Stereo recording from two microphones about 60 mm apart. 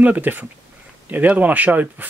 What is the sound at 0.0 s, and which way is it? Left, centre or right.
Speech, right.